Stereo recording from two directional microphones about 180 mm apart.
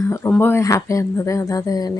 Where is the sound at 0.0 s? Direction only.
15° left (ahead or behind).